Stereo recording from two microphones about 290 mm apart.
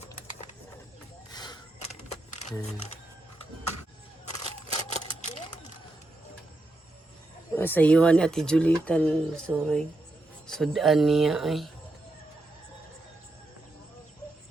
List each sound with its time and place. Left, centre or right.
1.3 s a sound: centre
4.7 s typewriter: left
7.5 s speech: centre